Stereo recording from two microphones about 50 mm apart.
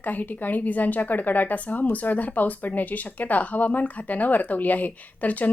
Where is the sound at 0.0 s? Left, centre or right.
Left.